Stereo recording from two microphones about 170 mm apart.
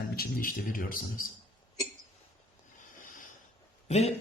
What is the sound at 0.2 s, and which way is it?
Speech, 55° left (ahead or behind).